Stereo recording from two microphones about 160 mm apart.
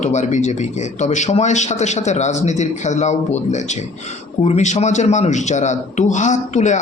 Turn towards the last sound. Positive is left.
turn(degrees=50)  # may be behind; listen again after turning